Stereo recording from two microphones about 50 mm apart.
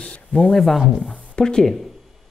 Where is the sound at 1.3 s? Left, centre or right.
Centre.